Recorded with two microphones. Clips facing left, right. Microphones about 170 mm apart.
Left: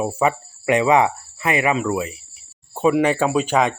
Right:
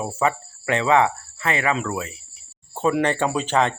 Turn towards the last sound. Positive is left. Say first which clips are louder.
# left 3 dB
turn(degrees=10)  # may be behind; listen again after turning